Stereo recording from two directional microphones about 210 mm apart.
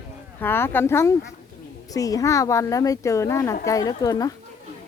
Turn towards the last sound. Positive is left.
turn(degrees=15)  # may be behind; listen again after turning